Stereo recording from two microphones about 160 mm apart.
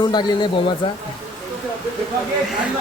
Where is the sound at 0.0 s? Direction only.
25° left (ahead or behind).